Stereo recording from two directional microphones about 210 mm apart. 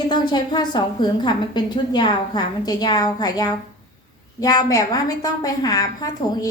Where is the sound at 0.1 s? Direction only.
20° left (ahead or behind).